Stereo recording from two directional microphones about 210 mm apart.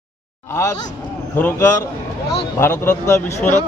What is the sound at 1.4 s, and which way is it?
A man's voice, 10° left (ahead or behind).